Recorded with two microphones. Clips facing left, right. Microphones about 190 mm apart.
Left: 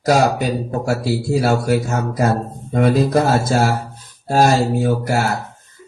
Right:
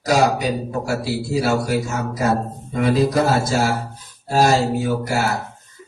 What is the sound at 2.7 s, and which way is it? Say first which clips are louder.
Speech: left 2 dB; 55° left (ahead or behind).